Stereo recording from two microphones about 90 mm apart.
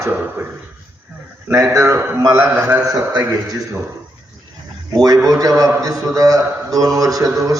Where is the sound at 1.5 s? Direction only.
30° right (ahead or behind).